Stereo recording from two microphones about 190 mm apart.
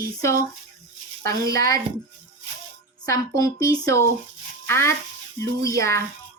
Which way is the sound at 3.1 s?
15° left (ahead or behind).